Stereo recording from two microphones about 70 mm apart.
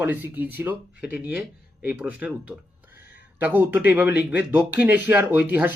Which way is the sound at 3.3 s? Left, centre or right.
Right.